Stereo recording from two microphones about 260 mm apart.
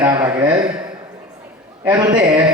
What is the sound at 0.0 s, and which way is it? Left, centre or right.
Speech, centre.